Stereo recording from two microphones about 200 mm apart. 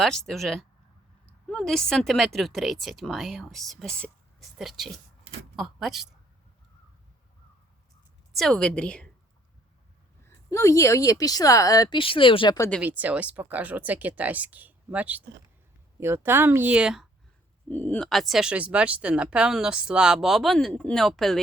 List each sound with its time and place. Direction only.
0.0 s speech: centre (ahead or behind)
8.4 s speech: 5° left (ahead or behind)
10.2 s a woman's voice: 15° left (ahead or behind)
12.5 s a woman's voice: 15° left (ahead or behind)
12.8 s speech: 10° right (ahead or behind)
17.7 s speech: 10° left (ahead or behind)